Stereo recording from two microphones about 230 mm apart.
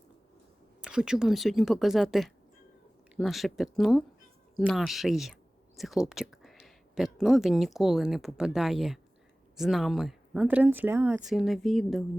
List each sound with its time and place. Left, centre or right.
0.8 s speech: centre